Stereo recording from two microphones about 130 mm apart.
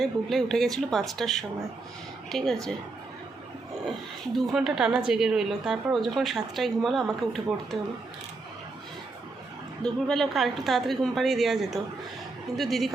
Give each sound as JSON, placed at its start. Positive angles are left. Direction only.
{"t": 0.0, "sound": "a woman's voice", "side_deg": 0}
{"t": 4.4, "sound": "a woman's voice", "side_deg": -5}
{"t": 9.8, "sound": "a woman's voice", "side_deg": 5}